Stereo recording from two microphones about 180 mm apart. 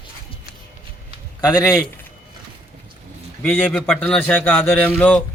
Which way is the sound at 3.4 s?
5° left (ahead or behind).